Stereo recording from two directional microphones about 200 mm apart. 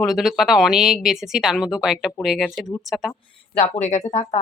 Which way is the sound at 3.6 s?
35° left (ahead or behind).